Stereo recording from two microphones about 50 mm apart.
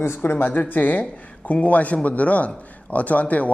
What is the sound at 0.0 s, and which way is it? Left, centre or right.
Speech, left.